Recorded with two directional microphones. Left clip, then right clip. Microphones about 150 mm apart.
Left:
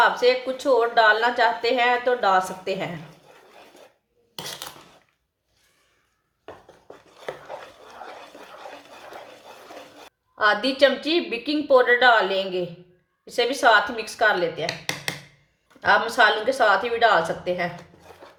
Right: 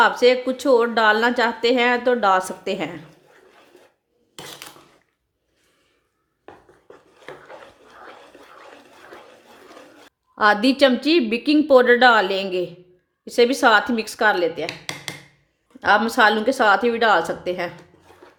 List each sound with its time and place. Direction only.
0.0 s a woman's voice: 90° right
10.3 s a woman's voice: 90° right
15.8 s speech: 80° right
18.2 s cutlery: 10° left (ahead or behind)